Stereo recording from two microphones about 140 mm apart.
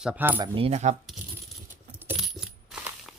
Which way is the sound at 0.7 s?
55° right (ahead or behind).